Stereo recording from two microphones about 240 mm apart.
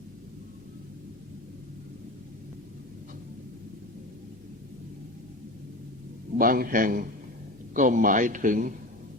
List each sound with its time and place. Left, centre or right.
6.3 s a man's voice: right